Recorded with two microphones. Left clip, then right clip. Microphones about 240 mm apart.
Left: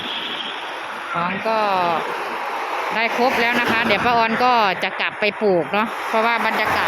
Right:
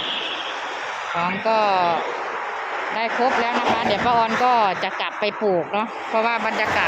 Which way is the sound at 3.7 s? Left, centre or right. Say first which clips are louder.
Left 2 dB; centre.